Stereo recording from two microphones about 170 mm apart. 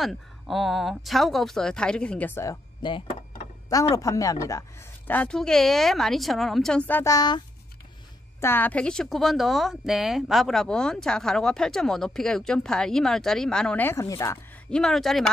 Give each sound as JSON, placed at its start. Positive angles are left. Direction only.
{"t": 0.0, "sound": "a woman's voice", "side_deg": 0}
{"t": 6.9, "sound": "speech", "side_deg": 15}
{"t": 8.4, "sound": "a woman's voice", "side_deg": 10}
{"t": 14.7, "sound": "a woman's voice", "side_deg": 5}